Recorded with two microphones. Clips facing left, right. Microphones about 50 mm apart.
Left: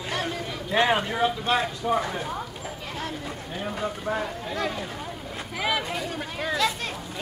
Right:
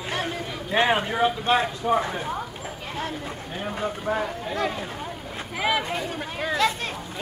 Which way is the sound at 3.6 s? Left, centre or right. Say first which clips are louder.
Right 1 dB; right.